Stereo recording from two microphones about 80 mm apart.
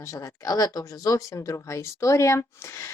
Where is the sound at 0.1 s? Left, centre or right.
Left.